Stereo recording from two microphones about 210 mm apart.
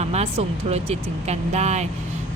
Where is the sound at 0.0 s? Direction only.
30° right (ahead or behind).